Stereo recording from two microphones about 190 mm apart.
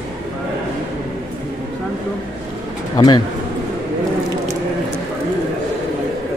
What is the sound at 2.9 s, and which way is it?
Speech, 20° left (ahead or behind).